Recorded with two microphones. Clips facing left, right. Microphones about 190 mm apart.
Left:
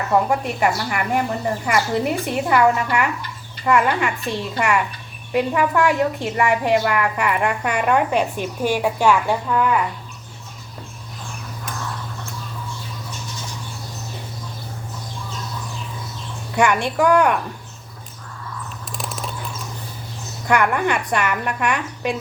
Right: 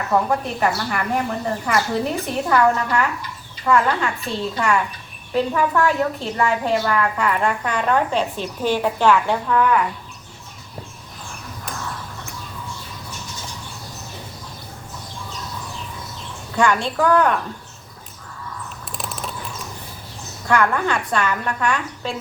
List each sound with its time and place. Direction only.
0.3 s a woman's voice: 10° left (ahead or behind)
16.6 s a woman's voice: 15° left (ahead or behind)
18.9 s cricket: centre (ahead or behind)
20.5 s a woman's voice: 15° left (ahead or behind)